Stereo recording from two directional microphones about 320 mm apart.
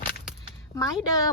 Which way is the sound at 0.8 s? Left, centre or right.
Centre.